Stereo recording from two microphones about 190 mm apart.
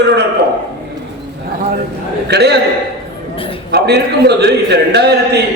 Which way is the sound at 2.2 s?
60° right (ahead or behind).